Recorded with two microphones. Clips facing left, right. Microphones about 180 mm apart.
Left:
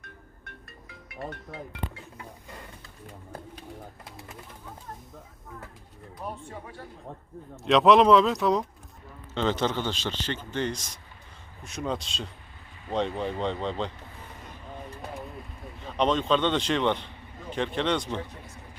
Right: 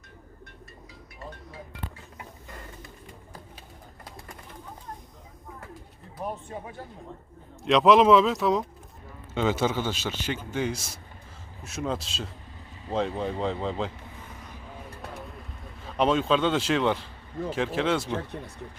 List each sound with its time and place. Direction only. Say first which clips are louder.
0.0 s music: right 1 dB; 55° left (ahead or behind)
6.1 s speech: right 4 dB; 20° right (ahead or behind)
7.6 s a man's voice: even; centre (ahead or behind)
15.8 s a man's voice: right 1 dB; 5° right (ahead or behind)